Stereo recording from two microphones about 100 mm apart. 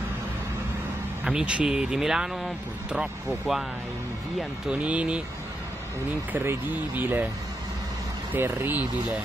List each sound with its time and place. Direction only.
1.2 s speech: 10° right (ahead or behind)
4.6 s speech: 10° right (ahead or behind)
6.3 s speech: 20° right (ahead or behind)
8.3 s speech: 20° right (ahead or behind)